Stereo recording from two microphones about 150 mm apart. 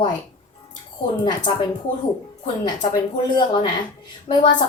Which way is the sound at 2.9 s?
30° left (ahead or behind).